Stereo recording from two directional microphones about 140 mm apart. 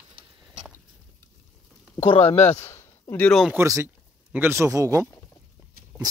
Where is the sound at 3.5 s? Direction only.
20° right (ahead or behind).